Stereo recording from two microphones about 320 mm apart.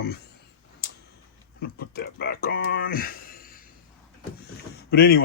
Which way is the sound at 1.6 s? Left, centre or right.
Left.